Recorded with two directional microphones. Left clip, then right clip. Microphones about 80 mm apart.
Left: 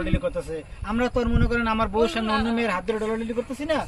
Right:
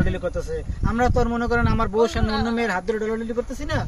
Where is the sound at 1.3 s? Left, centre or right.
Right.